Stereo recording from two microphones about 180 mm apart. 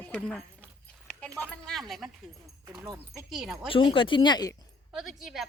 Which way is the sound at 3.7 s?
25° left (ahead or behind).